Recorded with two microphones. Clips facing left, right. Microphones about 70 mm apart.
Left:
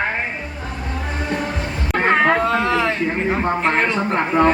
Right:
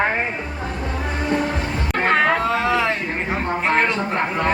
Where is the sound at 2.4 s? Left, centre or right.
Centre.